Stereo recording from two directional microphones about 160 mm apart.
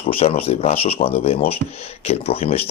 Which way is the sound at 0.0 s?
35° left (ahead or behind).